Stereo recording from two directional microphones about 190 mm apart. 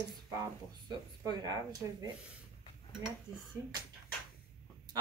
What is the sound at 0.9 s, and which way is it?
Speech, 20° right (ahead or behind).